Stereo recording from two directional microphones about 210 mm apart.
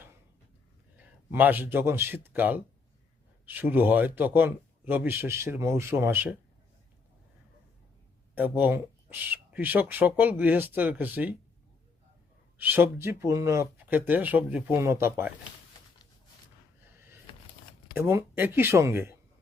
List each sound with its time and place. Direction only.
0.9 s speech: 10° right (ahead or behind)
8.4 s speech: 10° right (ahead or behind)
12.5 s speech: 10° right (ahead or behind)
17.3 s a sound: 25° left (ahead or behind)
17.9 s speech: 10° right (ahead or behind)